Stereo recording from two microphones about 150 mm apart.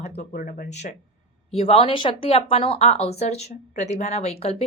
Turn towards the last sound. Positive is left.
turn(degrees=45)  # may be behind; listen again after turning